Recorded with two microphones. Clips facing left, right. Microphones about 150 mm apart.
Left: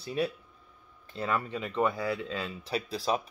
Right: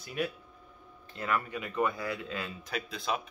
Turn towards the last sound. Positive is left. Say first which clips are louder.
# left 4 dB
turn(degrees=35)  # may be behind; listen again after turning